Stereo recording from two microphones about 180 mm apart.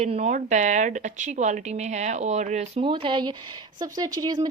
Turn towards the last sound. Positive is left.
turn(degrees=-20)  # may be behind; listen again after turning